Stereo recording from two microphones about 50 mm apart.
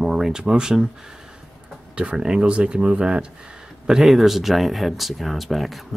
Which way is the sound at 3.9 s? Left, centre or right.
Centre.